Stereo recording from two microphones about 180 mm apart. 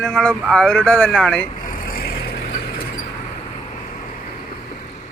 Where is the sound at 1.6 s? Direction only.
50° left (ahead or behind).